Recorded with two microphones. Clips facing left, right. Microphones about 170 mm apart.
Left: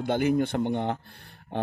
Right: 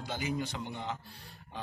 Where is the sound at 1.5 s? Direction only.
60° left (ahead or behind).